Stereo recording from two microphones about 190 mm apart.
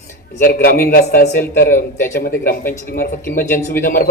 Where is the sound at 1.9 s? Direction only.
15° left (ahead or behind).